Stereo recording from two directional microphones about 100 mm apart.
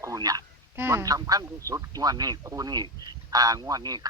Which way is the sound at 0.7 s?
25° right (ahead or behind).